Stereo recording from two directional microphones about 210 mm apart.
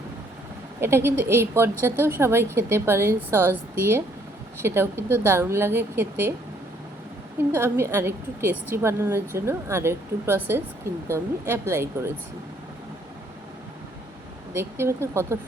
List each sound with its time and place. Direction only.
0.8 s a woman's voice: 10° right (ahead or behind)
7.5 s a woman's voice: 10° right (ahead or behind)
14.5 s a woman's voice: 10° right (ahead or behind)